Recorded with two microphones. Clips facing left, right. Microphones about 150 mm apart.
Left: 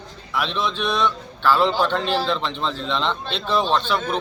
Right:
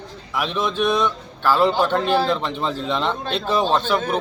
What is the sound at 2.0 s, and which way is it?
Speech, 50° right (ahead or behind).